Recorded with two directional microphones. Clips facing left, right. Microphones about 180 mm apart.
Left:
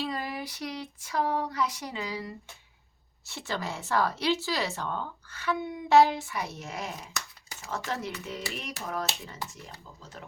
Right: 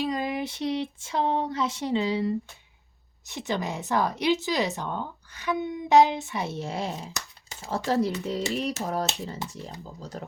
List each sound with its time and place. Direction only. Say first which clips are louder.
0.0 s speech: right 6 dB; 20° right (ahead or behind); by 10.2 s 40° right (ahead or behind)